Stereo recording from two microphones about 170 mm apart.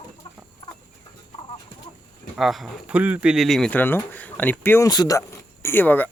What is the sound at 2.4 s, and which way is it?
Speech, centre (ahead or behind).